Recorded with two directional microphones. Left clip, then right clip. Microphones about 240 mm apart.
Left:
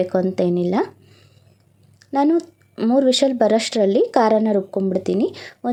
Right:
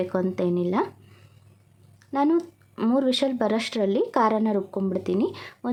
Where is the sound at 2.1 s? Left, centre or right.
Centre.